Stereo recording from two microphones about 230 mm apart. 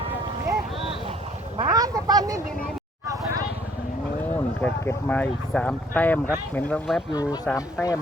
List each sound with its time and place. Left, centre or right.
1.6 s a sound: centre
4.2 s speech: centre
7.1 s speech: centre